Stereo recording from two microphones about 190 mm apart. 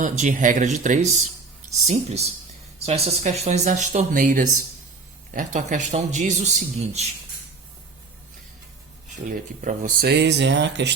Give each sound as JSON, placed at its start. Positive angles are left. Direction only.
{"t": 0.0, "sound": "speech", "side_deg": -40}
{"t": 9.2, "sound": "speech", "side_deg": -40}
{"t": 10.1, "sound": "speech", "side_deg": -65}